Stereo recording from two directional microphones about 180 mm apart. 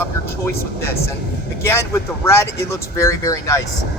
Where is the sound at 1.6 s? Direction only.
15° left (ahead or behind).